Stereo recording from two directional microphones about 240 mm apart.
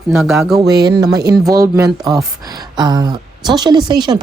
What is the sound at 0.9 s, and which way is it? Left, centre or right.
A woman's voice, centre.